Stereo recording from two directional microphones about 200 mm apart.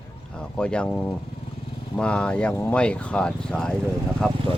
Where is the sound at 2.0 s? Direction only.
5° left (ahead or behind).